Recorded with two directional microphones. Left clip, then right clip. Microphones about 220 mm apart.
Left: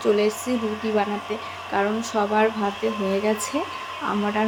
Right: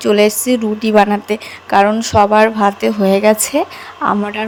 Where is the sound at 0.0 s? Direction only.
45° right (ahead or behind).